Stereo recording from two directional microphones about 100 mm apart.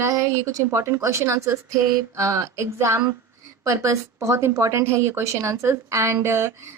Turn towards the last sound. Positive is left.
turn(degrees=-25)  # may be behind; listen again after turning